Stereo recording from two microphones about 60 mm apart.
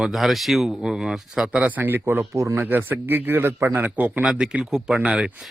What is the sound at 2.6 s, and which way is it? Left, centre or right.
A man's voice, right.